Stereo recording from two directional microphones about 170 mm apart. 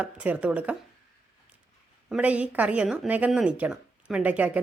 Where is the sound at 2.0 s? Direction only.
5° right (ahead or behind).